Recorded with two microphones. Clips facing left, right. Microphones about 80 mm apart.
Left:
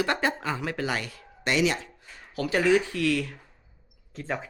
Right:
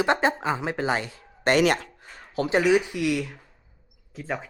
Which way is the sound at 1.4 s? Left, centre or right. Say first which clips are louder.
Right 5 dB; right.